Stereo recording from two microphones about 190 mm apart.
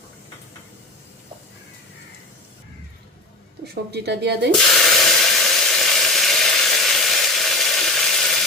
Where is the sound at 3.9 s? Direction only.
60° right (ahead or behind).